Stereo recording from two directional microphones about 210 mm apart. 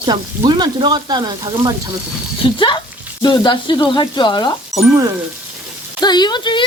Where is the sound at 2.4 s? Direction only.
20° left (ahead or behind).